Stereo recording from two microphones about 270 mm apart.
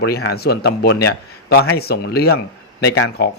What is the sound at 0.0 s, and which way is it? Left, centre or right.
A man's voice, left.